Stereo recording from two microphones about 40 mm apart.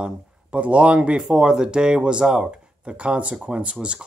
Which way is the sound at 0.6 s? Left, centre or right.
Right.